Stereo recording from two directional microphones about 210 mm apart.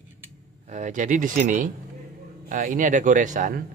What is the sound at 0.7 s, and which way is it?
A man's voice, 35° right (ahead or behind).